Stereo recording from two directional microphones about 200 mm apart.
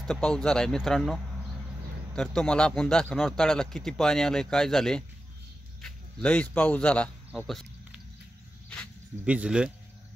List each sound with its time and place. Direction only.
0.0 s speech: 5° left (ahead or behind)
9.2 s speech: 5° right (ahead or behind)